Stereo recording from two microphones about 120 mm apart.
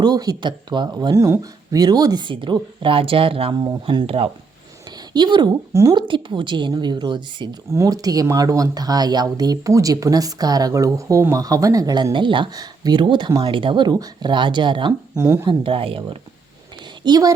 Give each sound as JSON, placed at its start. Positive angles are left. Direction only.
{"t": 0.0, "sound": "speech", "side_deg": -30}
{"t": 5.1, "sound": "speech", "side_deg": -35}
{"t": 7.7, "sound": "speech", "side_deg": -25}
{"t": 15.1, "sound": "speech", "side_deg": -20}
{"t": 15.4, "sound": "speech", "side_deg": -45}
{"t": 17.0, "sound": "a woman's voice", "side_deg": -35}